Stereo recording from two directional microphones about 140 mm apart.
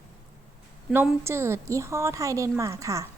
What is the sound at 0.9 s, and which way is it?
A woman's voice, 15° right (ahead or behind).